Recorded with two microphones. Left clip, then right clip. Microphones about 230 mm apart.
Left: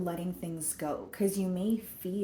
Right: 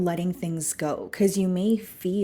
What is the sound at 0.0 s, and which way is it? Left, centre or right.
A woman's voice, right.